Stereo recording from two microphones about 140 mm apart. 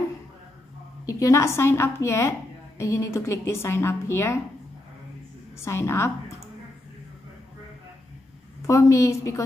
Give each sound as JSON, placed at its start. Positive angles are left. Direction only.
{"t": 1.0, "sound": "a woman's voice", "side_deg": 20}
{"t": 5.6, "sound": "a woman's voice", "side_deg": 20}
{"t": 8.6, "sound": "a woman's voice", "side_deg": 20}